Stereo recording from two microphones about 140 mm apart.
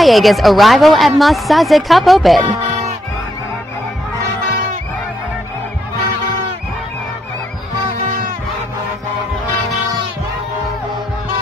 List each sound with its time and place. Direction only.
0.0 s a woman's voice: centre (ahead or behind)